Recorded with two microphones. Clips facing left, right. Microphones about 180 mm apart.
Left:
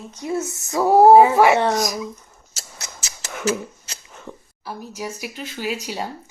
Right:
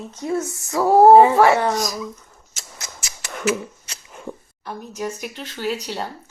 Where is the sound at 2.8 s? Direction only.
25° left (ahead or behind).